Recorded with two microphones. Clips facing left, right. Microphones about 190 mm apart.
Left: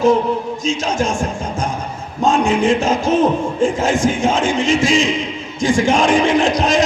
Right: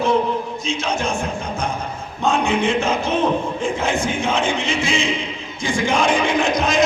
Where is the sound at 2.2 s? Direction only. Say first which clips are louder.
Left 4 dB; 45° left (ahead or behind).